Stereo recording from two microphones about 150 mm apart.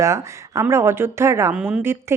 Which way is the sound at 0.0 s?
20° right (ahead or behind).